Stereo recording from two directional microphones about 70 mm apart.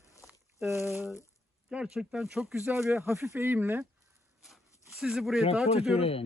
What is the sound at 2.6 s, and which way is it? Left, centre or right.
Speech, right.